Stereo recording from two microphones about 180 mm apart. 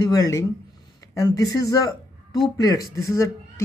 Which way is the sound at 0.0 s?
20° left (ahead or behind).